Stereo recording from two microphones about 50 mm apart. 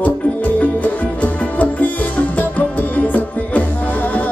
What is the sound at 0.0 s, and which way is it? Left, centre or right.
Music, left.